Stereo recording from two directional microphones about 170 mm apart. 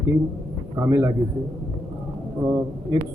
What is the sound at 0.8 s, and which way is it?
Speech, 20° right (ahead or behind).